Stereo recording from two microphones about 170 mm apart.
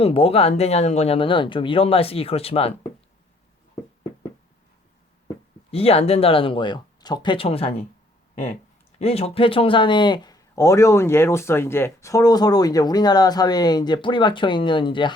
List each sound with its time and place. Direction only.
0.0 s speech: 35° left (ahead or behind)
5.7 s speech: 35° left (ahead or behind)
9.0 s speech: 35° left (ahead or behind)